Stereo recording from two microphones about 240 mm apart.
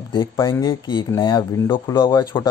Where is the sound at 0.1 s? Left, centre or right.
Centre.